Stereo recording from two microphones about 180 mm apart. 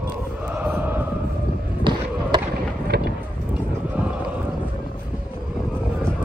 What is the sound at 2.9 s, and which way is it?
Boat, 65° right (ahead or behind).